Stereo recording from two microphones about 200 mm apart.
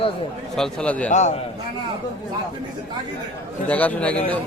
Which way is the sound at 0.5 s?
5° left (ahead or behind).